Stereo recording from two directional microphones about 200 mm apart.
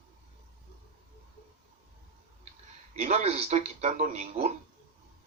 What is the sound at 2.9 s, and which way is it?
Speech, 30° right (ahead or behind).